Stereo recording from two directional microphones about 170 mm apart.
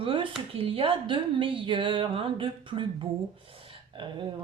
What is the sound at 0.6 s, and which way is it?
Speech, 35° right (ahead or behind).